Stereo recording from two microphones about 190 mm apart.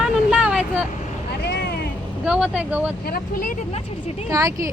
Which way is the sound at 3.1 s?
50° left (ahead or behind).